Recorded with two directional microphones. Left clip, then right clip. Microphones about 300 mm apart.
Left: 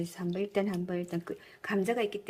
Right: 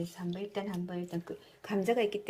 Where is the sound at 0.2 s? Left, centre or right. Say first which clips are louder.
Left 8 dB; left.